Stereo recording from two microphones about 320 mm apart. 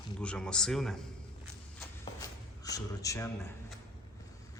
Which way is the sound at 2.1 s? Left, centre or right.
Centre.